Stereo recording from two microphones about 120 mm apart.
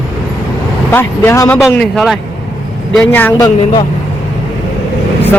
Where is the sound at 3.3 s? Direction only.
35° left (ahead or behind).